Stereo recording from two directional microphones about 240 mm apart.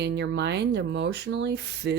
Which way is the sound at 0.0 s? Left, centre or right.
Right.